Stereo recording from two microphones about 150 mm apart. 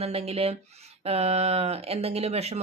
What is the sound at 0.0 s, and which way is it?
Speech, 45° right (ahead or behind).